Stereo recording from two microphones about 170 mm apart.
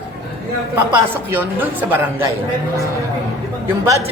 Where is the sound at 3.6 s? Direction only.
15° right (ahead or behind).